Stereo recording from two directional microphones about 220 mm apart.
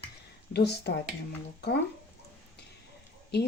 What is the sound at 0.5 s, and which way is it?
Speech, 50° left (ahead or behind).